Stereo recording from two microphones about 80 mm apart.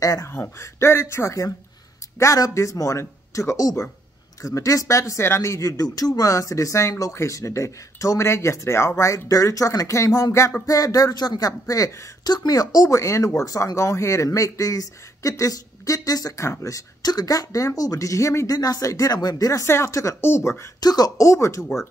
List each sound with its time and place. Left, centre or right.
0.0 s speech: left
0.3 s speech: left
18.6 s speech: left
20.8 s speech: left
21.3 s speech: left